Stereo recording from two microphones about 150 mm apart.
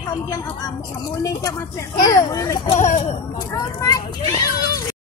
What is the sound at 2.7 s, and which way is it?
Speech, 50° left (ahead or behind).